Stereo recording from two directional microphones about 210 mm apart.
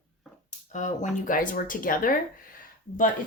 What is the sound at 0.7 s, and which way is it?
Speech, 35° left (ahead or behind).